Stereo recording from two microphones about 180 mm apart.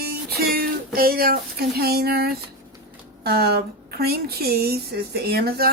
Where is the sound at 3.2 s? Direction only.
60° right (ahead or behind).